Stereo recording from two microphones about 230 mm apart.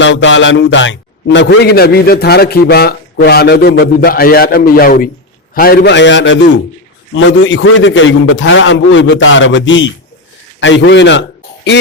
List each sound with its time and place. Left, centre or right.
0.0 s a man's voice: left